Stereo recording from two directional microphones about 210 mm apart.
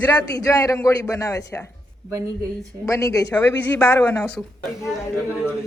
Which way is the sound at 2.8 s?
15° left (ahead or behind).